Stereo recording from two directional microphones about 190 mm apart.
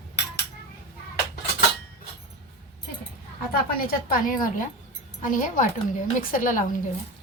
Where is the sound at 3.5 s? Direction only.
50° left (ahead or behind).